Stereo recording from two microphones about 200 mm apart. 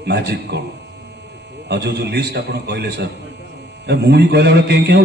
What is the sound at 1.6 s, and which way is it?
A man's voice, 55° right (ahead or behind).